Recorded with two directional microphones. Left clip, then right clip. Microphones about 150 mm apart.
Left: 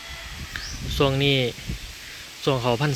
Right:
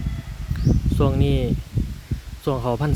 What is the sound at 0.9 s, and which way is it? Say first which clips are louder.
Speech: left 4 dB; 10° right (ahead or behind).